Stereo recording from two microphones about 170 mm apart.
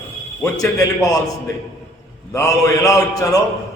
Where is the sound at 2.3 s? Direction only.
20° left (ahead or behind).